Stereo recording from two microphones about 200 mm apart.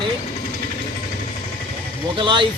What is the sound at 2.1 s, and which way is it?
Speech, 25° right (ahead or behind).